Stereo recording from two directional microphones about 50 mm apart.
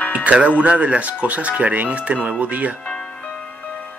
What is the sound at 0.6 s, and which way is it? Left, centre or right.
Speech, right.